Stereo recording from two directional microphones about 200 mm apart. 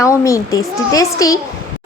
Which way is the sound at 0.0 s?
15° left (ahead or behind).